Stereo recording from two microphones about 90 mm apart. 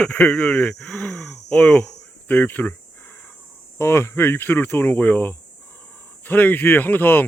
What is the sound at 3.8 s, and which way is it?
Speech, 30° left (ahead or behind).